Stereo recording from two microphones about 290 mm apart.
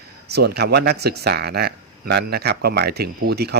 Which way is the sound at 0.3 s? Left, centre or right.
Right.